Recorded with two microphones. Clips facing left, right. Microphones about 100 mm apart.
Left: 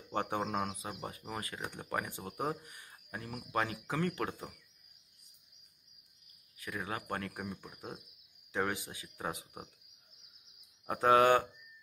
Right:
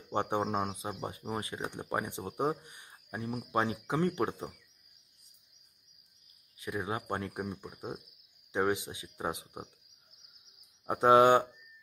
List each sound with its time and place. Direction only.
0.1 s speech: 20° right (ahead or behind)
6.6 s speech: 20° right (ahead or behind)
10.9 s speech: 20° right (ahead or behind)